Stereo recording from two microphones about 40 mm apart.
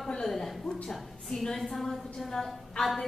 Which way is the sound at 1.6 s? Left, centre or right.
Centre.